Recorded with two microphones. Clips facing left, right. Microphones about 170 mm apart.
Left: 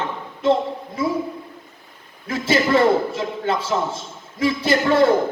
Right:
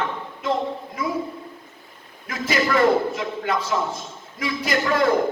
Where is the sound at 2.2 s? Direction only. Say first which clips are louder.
Left 4 dB; 30° left (ahead or behind).